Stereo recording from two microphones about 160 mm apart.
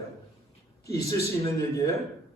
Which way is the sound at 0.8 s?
20° left (ahead or behind).